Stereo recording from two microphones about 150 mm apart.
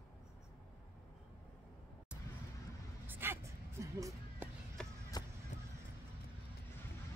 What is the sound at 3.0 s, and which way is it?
Music, 15° right (ahead or behind).